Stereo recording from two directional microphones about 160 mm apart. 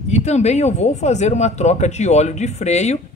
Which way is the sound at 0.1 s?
45° left (ahead or behind).